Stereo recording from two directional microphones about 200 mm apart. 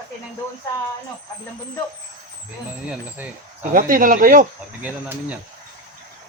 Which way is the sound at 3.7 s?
45° right (ahead or behind).